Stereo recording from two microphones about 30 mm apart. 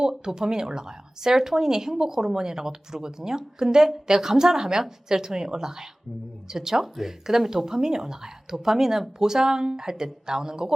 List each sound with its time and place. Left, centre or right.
0.3 s speech: right